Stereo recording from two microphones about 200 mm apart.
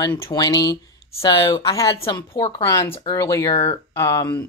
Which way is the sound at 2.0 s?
30° left (ahead or behind).